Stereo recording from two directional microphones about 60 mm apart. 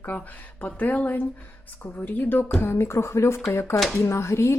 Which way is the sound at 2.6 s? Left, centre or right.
Left.